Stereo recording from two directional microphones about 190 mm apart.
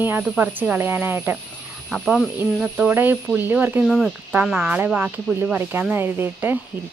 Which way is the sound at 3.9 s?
Centre (ahead or behind).